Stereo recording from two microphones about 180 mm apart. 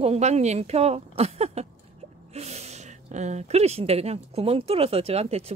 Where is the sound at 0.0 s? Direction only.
35° right (ahead or behind).